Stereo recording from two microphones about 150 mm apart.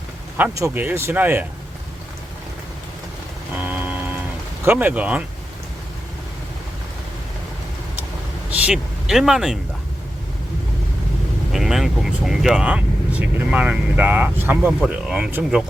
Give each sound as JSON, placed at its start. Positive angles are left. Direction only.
{"t": 0.6, "sound": "speech", "side_deg": -10}
{"t": 3.5, "sound": "a sound", "side_deg": -10}
{"t": 4.6, "sound": "speech", "side_deg": -15}
{"t": 8.4, "sound": "speech", "side_deg": -10}
{"t": 11.5, "sound": "speech", "side_deg": 0}